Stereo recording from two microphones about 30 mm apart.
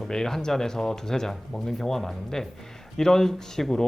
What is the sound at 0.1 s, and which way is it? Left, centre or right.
Speech, centre.